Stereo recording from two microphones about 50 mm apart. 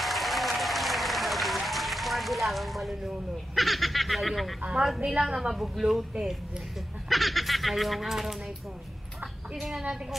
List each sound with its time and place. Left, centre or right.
0.0 s applause: centre
3.5 s speech: centre
4.6 s speech: right
5.3 s a woman's voice: centre
7.1 s speech: centre
9.6 s speech: centre